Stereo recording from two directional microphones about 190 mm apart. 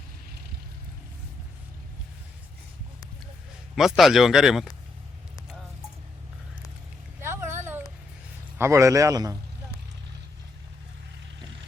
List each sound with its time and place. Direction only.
3.8 s speech: centre (ahead or behind)
7.2 s a sound: 15° right (ahead or behind)
8.5 s a man's voice: 15° right (ahead or behind)